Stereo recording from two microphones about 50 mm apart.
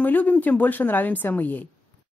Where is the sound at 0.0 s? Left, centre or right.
Left.